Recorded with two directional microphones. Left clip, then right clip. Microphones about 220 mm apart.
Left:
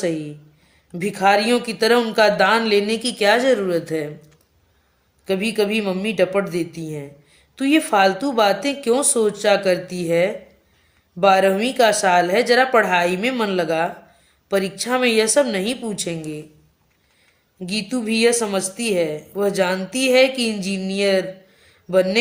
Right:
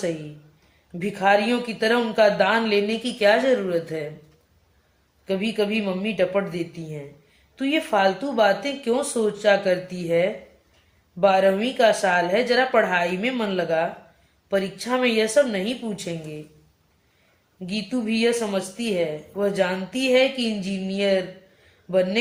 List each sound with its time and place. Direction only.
0.9 s speech: 50° left (ahead or behind)
5.2 s speech: 50° left (ahead or behind)
17.7 s speech: 50° left (ahead or behind)